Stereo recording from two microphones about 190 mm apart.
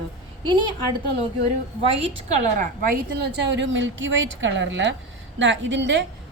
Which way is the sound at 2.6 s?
50° right (ahead or behind).